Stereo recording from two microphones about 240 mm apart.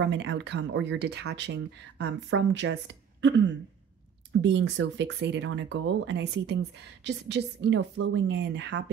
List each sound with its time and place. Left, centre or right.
0.0 s speech: right
3.2 s a sound: right
4.4 s speech: right